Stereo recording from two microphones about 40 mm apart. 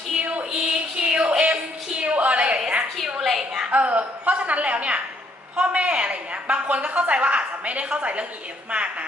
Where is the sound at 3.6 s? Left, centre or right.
Right.